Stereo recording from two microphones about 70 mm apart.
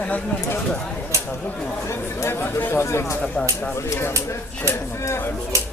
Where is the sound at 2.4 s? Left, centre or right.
Left.